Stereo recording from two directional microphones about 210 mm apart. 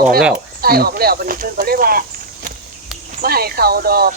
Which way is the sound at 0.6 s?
45° right (ahead or behind).